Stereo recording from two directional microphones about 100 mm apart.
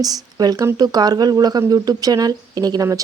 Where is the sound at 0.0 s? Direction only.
40° right (ahead or behind).